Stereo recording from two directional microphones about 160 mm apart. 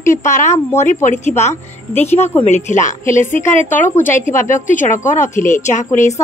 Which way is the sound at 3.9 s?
55° left (ahead or behind).